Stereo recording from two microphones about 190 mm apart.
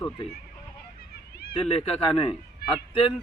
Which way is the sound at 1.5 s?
30° left (ahead or behind).